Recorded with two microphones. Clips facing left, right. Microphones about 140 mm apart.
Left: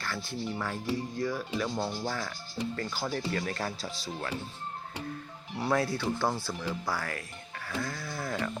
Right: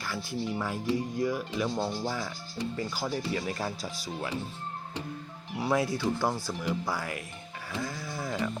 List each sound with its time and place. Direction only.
0.0 s speech: 10° right (ahead or behind)
5.5 s speech: 15° right (ahead or behind)